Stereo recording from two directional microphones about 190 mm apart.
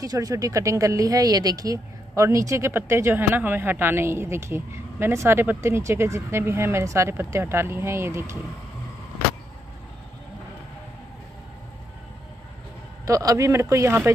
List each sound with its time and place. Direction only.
0.0 s speech: 20° right (ahead or behind)
13.0 s speech: 20° right (ahead or behind)